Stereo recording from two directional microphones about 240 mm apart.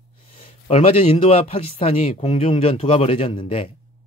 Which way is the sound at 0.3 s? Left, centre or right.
Left.